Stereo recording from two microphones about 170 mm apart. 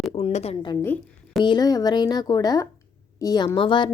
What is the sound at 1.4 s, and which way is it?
A woman's voice, 25° left (ahead or behind).